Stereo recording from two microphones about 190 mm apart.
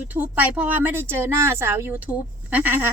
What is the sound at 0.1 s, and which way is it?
Speech, 10° right (ahead or behind).